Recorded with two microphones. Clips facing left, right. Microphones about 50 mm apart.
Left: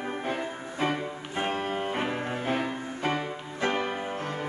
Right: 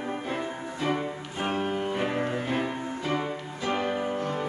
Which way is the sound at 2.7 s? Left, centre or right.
Centre.